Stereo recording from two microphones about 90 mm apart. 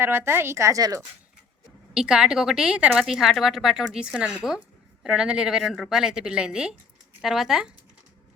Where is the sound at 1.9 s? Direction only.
10° right (ahead or behind).